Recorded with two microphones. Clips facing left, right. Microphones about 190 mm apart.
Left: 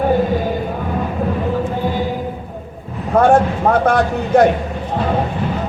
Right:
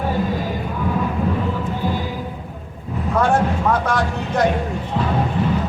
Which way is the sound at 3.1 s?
55° left (ahead or behind).